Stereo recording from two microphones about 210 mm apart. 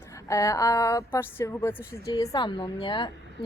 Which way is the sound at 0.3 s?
15° left (ahead or behind).